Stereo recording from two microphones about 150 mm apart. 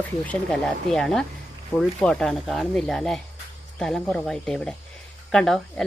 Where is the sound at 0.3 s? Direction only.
5° left (ahead or behind).